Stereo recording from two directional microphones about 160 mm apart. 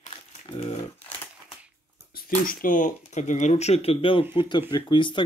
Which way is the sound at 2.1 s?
65° left (ahead or behind).